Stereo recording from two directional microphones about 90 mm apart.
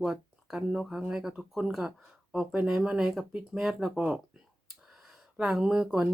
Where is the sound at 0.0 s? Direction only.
5° right (ahead or behind).